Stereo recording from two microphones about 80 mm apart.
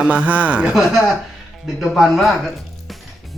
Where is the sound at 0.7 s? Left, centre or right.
Centre.